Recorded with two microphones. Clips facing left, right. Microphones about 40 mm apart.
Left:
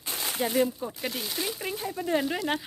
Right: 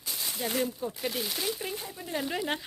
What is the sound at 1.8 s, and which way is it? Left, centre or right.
Speech, left.